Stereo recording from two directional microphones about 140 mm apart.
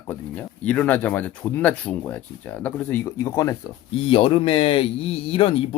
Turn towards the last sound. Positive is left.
turn(degrees=45)  # may be behind; listen again after turning